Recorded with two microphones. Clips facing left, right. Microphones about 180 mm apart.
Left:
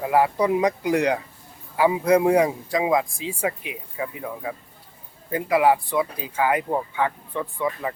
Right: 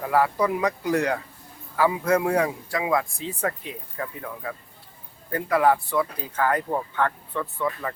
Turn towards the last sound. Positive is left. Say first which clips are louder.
# left 2 dB
turn(degrees=15)  # may be behind; listen again after turning